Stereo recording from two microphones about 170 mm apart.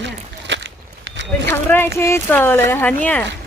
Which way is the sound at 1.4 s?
15° left (ahead or behind).